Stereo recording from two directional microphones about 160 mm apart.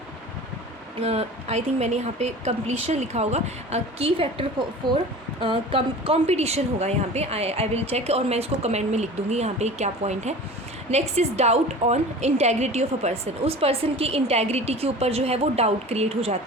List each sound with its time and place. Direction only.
1.0 s a woman's voice: 40° right (ahead or behind)